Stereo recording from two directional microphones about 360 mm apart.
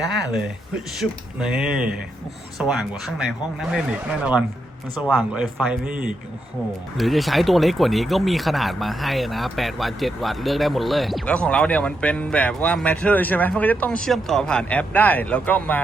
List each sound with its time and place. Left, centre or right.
0.0 s speech: centre
4.9 s speech: centre